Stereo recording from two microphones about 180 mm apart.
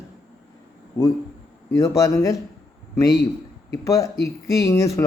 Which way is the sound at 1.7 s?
15° left (ahead or behind).